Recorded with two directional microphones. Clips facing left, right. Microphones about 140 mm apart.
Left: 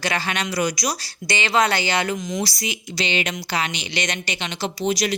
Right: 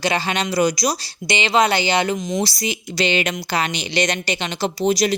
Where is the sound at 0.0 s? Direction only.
25° right (ahead or behind).